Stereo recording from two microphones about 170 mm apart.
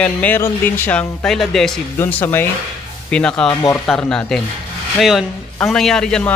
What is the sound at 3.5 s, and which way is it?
Speech, 25° left (ahead or behind).